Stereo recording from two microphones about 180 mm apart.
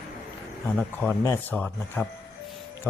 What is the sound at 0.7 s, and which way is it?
Speech, 5° left (ahead or behind).